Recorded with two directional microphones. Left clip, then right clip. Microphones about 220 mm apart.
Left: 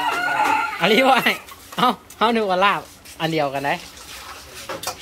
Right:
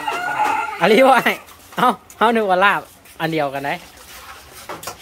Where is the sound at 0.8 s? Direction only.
20° right (ahead or behind).